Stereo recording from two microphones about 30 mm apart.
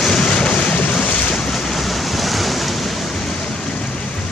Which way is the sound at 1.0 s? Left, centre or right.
Left.